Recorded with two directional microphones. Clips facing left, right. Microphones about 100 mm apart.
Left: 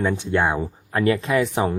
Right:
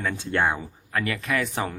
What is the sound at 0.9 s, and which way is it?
Speech, 30° left (ahead or behind).